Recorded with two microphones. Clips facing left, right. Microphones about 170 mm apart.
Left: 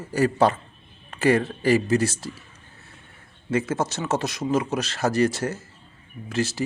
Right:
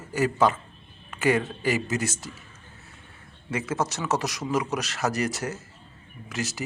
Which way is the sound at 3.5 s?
30° left (ahead or behind).